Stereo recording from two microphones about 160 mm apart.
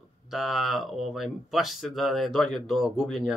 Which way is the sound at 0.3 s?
Centre (ahead or behind).